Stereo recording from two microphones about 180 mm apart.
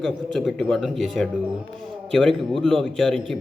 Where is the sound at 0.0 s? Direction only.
Centre (ahead or behind).